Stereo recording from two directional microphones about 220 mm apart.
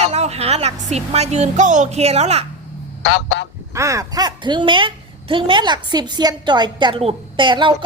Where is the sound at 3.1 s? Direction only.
50° left (ahead or behind).